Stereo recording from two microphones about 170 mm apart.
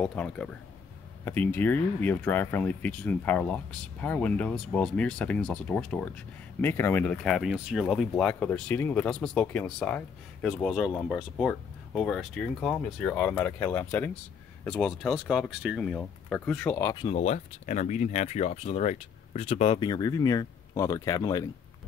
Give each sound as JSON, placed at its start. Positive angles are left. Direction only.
{"t": 0.0, "sound": "speech", "side_deg": 5}
{"t": 16.9, "sound": "speech", "side_deg": 30}
{"t": 17.2, "sound": "speech", "side_deg": 45}